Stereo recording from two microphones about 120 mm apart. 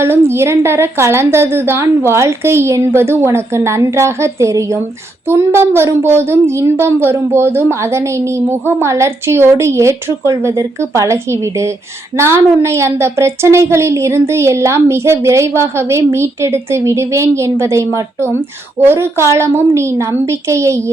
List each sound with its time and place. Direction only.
0.0 s a child's voice: 20° right (ahead or behind)